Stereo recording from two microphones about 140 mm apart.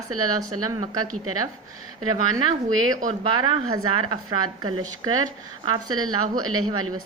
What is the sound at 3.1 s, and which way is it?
Speech, 30° right (ahead or behind).